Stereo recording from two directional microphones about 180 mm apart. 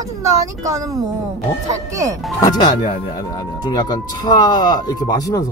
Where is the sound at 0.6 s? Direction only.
15° right (ahead or behind).